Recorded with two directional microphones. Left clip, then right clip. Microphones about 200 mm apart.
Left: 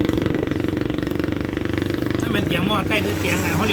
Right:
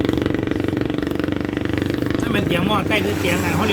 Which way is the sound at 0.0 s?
45° right (ahead or behind).